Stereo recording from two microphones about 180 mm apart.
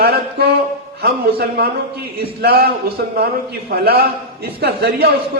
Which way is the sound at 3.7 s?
60° right (ahead or behind).